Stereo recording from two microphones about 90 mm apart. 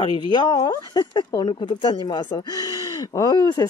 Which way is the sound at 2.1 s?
60° left (ahead or behind).